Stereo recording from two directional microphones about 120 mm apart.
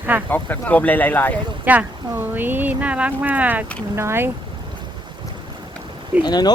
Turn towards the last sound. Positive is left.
turn(degrees=35)  # may be behind; listen again after turning